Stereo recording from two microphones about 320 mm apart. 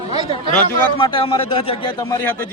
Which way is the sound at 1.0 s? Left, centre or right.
Centre.